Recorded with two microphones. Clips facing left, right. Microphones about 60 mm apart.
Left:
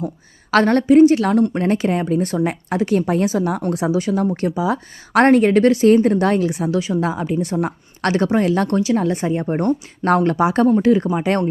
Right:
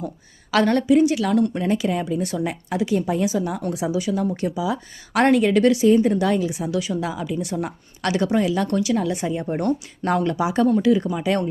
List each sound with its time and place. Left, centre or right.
0.5 s speech: left
6.7 s speech: left
8.7 s speech: left
10.7 s speech: left
11.0 s speech: left